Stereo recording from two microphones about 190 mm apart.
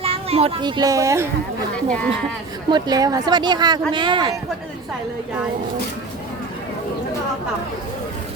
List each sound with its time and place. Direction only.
0.0 s speech: 30° right (ahead or behind); by 1.3 s 15° right (ahead or behind)
2.6 s speech: 20° right (ahead or behind)